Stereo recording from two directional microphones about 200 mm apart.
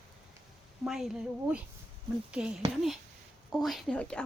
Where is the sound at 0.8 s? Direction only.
Centre (ahead or behind).